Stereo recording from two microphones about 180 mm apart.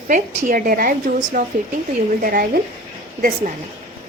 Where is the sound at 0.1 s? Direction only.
45° right (ahead or behind).